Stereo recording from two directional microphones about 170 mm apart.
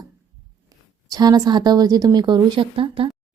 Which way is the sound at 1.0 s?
20° right (ahead or behind).